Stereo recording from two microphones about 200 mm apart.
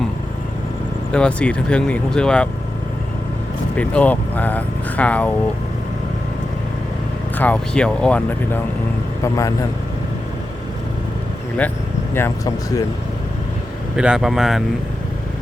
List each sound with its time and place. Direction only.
1.1 s speech: 5° left (ahead or behind)
3.8 s speech: 5° left (ahead or behind)
7.3 s speech: 5° left (ahead or behind)
12.1 s speech: 15° left (ahead or behind)
13.9 s speech: 5° right (ahead or behind)